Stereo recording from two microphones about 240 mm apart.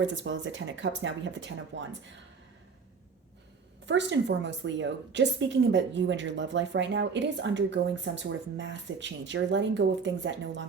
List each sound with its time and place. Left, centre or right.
0.0 s a woman's voice: right
3.8 s a woman's voice: right